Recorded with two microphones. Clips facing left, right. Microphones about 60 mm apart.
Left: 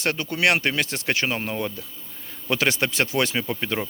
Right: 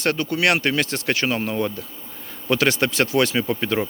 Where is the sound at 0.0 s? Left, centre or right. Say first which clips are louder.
Right 2 dB; centre.